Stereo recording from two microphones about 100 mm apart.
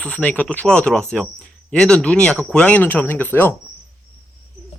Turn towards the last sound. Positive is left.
turn(degrees=20)  # may be behind; listen again after turning